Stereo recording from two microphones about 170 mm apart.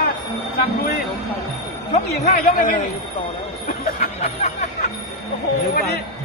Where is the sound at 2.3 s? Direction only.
55° left (ahead or behind).